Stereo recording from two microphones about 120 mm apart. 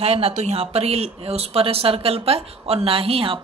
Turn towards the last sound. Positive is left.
turn(degrees=-50)  # may be behind; listen again after turning